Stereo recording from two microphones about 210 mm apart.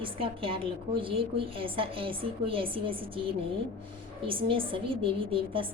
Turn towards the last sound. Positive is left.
turn(degrees=-25)  # may be behind; listen again after turning